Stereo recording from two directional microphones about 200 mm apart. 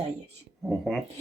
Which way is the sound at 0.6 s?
Centre (ahead or behind).